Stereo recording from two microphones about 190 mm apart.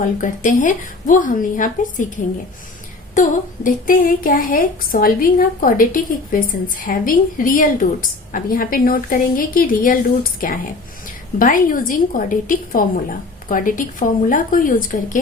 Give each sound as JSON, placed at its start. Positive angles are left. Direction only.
{"t": 0.0, "sound": "a woman's voice", "side_deg": 45}